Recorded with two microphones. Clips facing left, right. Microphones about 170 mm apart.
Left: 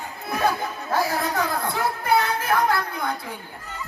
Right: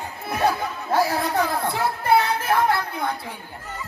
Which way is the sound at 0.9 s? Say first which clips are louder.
Right 3 dB; 30° right (ahead or behind).